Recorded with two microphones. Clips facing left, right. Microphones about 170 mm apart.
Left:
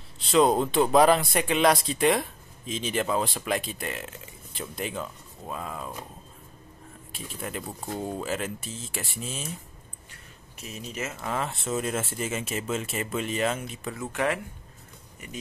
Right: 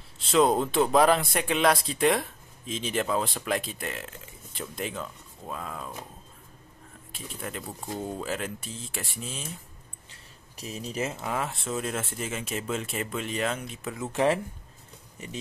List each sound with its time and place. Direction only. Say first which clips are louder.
0.3 s speech: left 1 dB; centre (ahead or behind)
7.4 s speech: left 2 dB; 5° left (ahead or behind)
10.6 s speech: right 3 dB; 35° right (ahead or behind)
11.2 s speech: left 1 dB; 5° right (ahead or behind)
14.1 s speech: right 4 dB; 30° right (ahead or behind)